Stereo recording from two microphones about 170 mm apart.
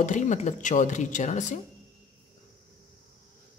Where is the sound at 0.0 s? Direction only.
45° left (ahead or behind).